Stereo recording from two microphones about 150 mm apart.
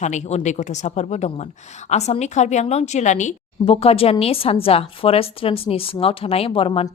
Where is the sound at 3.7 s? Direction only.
40° left (ahead or behind).